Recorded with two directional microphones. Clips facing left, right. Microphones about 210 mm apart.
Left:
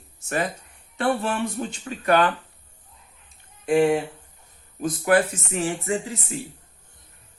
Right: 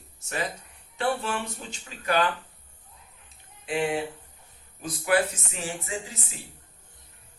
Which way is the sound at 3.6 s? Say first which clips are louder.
Left 8 dB; 45° left (ahead or behind).